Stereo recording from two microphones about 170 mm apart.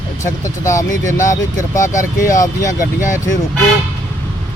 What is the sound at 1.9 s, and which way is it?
Speech, 50° left (ahead or behind).